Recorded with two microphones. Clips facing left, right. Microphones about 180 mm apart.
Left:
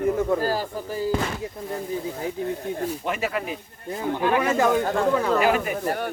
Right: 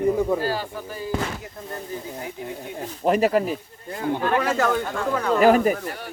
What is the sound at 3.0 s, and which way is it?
Speech, 35° right (ahead or behind).